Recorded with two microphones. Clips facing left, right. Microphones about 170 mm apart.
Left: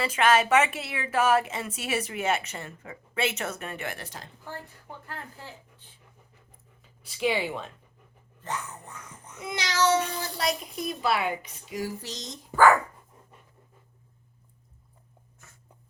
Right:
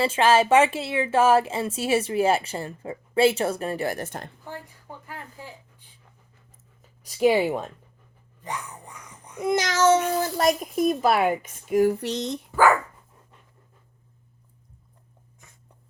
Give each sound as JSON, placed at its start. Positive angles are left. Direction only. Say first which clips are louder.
{"t": 0.0, "sound": "a woman's voice", "louder": "right 4 dB", "side_deg": -30}
{"t": 4.4, "sound": "a woman's voice", "louder": "right 2 dB", "side_deg": -15}
{"t": 7.0, "sound": "a child's voice", "louder": "right 8 dB", "side_deg": -45}
{"t": 8.4, "sound": "music", "louder": "right 1 dB", "side_deg": -10}
{"t": 9.4, "sound": "a child's voice", "louder": "right 6 dB", "side_deg": -45}